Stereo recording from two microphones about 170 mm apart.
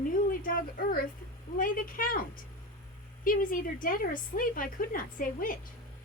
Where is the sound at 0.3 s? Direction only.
55° left (ahead or behind).